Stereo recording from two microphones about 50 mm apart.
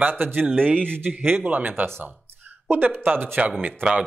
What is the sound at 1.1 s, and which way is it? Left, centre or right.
Speech, right.